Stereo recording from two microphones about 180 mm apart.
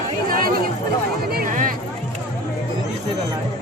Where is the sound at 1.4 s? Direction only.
50° right (ahead or behind).